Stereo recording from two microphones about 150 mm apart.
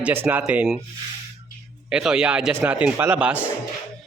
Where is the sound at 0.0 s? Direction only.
15° right (ahead or behind).